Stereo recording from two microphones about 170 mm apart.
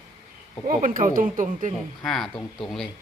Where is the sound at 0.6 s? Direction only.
55° right (ahead or behind).